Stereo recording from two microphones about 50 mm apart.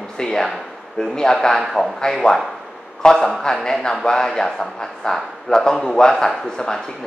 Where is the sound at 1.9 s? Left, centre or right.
Centre.